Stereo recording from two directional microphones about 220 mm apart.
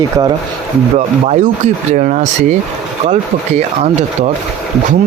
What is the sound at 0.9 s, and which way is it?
Speech, 30° right (ahead or behind).